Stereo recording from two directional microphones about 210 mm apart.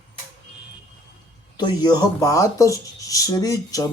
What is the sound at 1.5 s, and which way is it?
Speech, 20° left (ahead or behind).